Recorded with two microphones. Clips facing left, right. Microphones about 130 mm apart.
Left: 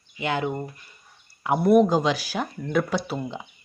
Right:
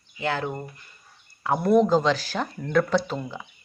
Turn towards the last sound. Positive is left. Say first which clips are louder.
# left 3 dB
turn(degrees=25)  # may be behind; listen again after turning